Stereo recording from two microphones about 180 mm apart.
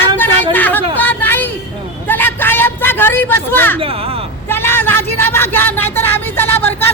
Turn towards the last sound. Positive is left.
turn(degrees=10)  # may be behind; listen again after turning